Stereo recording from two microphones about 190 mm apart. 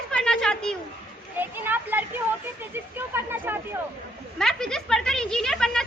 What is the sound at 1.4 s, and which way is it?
Speech, 10° right (ahead or behind).